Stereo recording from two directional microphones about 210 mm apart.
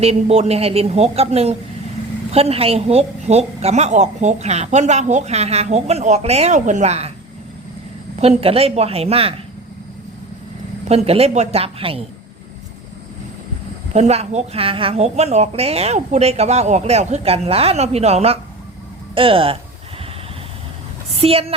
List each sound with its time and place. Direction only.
0.0 s a woman's voice: 30° right (ahead or behind)
8.2 s a woman's voice: 30° right (ahead or behind)
10.8 s a woman's voice: 30° right (ahead or behind)
13.9 s a woman's voice: 30° right (ahead or behind)
21.1 s a woman's voice: 30° right (ahead or behind)